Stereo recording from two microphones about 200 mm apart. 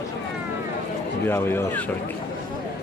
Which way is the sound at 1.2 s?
10° left (ahead or behind).